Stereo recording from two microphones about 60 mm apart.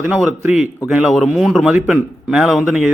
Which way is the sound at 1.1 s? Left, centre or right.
Centre.